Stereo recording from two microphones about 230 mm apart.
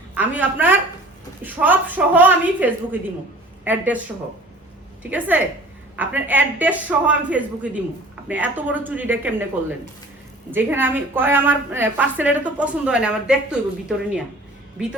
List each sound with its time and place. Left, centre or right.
0.1 s a woman's voice: centre
5.0 s a woman's voice: centre